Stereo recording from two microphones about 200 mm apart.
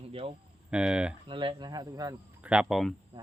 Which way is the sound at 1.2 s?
25° right (ahead or behind).